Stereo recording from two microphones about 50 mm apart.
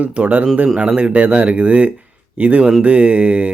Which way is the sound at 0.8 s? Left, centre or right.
Right.